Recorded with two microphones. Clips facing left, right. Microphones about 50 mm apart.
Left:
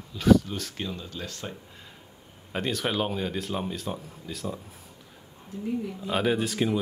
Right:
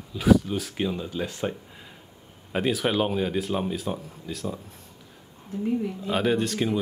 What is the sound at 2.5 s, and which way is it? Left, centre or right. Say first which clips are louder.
Speech: right 4 dB; centre.